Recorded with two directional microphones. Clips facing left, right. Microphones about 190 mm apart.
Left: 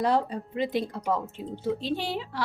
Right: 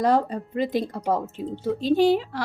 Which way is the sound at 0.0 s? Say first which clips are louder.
Right 4 dB; 45° right (ahead or behind).